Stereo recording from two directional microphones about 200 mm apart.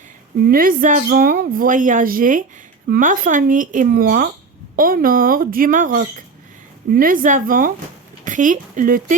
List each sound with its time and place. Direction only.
0.4 s a woman's voice: 45° right (ahead or behind)